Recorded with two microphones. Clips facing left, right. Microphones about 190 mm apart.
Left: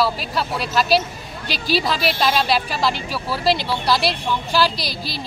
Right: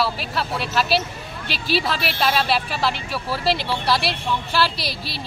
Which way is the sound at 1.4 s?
35° left (ahead or behind).